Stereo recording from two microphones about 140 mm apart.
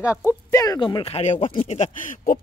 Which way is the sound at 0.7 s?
35° left (ahead or behind).